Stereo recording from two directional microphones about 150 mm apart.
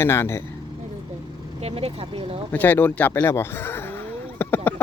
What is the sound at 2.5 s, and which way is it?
Horse, 10° left (ahead or behind).